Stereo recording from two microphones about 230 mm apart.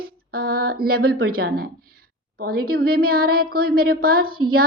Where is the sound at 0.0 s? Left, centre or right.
Right.